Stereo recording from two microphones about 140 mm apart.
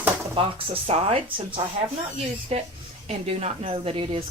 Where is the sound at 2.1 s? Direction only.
50° right (ahead or behind).